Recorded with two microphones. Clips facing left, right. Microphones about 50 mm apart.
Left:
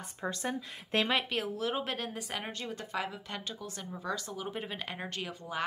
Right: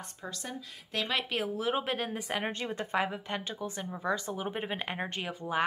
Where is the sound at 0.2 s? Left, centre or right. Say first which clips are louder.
Left 6 dB; left.